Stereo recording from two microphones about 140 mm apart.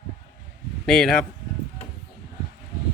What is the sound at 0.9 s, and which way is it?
Speech, centre (ahead or behind).